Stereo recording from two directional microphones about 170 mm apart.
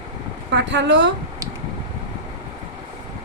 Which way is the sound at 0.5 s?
90° right.